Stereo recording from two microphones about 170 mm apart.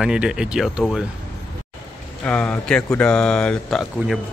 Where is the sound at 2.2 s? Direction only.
5° left (ahead or behind).